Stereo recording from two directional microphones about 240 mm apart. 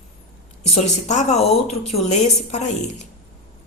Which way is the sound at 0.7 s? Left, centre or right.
Left.